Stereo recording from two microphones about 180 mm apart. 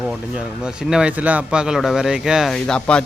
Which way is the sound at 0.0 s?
5° right (ahead or behind).